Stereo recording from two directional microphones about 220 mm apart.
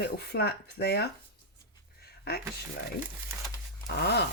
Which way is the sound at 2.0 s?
45° left (ahead or behind).